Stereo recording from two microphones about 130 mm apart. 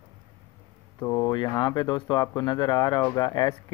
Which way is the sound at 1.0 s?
30° left (ahead or behind).